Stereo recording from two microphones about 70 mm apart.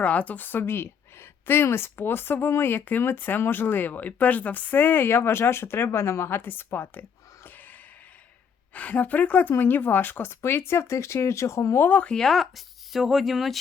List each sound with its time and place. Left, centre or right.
0.0 s a woman's voice: left
7.4 s snort: left
8.7 s a woman's voice: left
11.9 s speech: centre
12.1 s speech: centre